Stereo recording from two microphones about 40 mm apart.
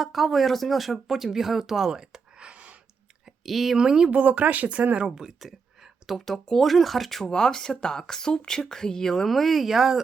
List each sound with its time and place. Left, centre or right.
0.0 s speech: centre
1.9 s a sound: centre
2.5 s a sound: right
3.4 s speech: centre
3.8 s speech: centre
4.1 s speech: right
5.0 s speech: centre
5.4 s a sound: centre
6.1 s speech: centre
7.3 s speech: centre
9.2 s speech: centre